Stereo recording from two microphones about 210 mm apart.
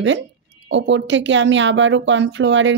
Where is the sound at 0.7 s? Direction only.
60° right (ahead or behind).